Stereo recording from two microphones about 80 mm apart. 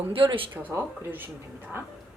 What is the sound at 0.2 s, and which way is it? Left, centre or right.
Speech, right.